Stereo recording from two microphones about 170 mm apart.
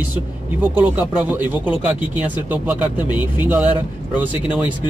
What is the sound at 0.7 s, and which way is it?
Speech, 10° right (ahead or behind).